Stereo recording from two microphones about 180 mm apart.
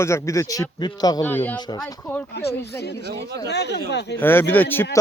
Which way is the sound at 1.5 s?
25° left (ahead or behind).